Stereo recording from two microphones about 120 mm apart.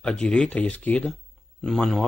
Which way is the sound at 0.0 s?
10° left (ahead or behind).